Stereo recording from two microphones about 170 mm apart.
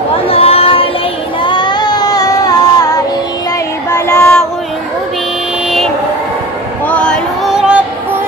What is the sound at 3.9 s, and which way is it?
Child singing, 15° left (ahead or behind).